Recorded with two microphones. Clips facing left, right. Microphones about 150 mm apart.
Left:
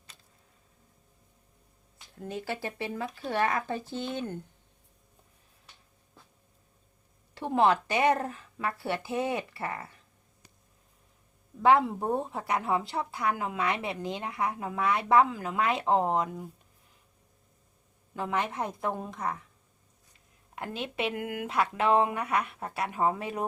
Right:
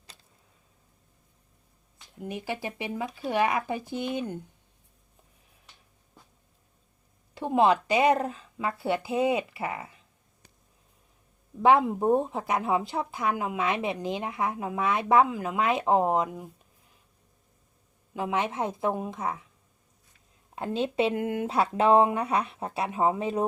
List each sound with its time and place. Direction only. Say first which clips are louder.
2.1 s speech: right 1 dB; 15° right (ahead or behind)
7.3 s a woman's voice: right 2 dB; 20° right (ahead or behind)
11.6 s a woman's voice: right 2 dB; 20° right (ahead or behind)
18.1 s speech: right 2 dB; 15° right (ahead or behind)
20.6 s a woman's voice: right 7 dB; 25° right (ahead or behind)